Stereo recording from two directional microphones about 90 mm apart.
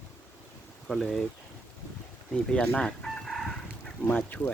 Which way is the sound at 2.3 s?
10° left (ahead or behind).